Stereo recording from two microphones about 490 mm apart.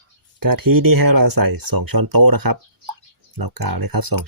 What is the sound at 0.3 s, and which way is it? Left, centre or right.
Speech, right.